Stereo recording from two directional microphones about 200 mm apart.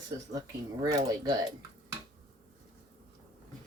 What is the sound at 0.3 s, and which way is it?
Speech, 15° right (ahead or behind).